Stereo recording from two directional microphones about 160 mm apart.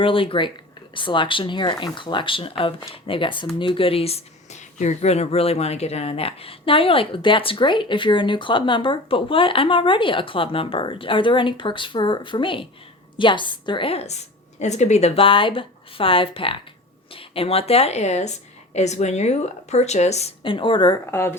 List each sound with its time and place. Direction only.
0.0 s speech: 35° left (ahead or behind)
21.1 s speech: 15° left (ahead or behind)